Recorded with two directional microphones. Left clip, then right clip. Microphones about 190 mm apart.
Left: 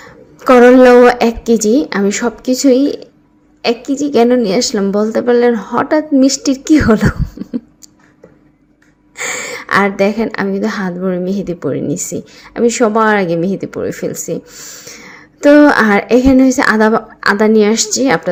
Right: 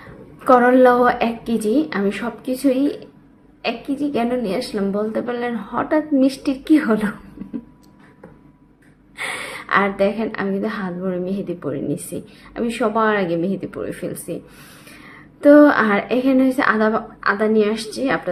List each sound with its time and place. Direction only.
0.0 s a woman's voice: 35° left (ahead or behind)
7.5 s a sound: 30° left (ahead or behind)
9.1 s a woman's voice: 35° left (ahead or behind)